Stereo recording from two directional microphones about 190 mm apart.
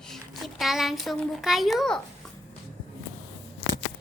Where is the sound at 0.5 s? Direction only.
Centre (ahead or behind).